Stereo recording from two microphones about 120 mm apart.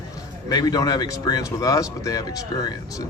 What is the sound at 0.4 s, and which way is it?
Speech, 30° left (ahead or behind).